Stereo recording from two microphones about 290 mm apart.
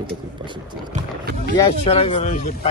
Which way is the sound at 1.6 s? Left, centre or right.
Centre.